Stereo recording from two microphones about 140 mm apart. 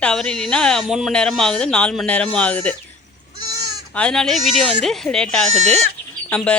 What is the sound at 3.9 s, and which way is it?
Speech, 5° left (ahead or behind).